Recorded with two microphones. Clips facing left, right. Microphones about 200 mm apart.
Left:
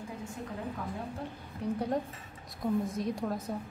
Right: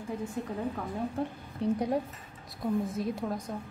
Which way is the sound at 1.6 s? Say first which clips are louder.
Right 5 dB; 30° right (ahead or behind).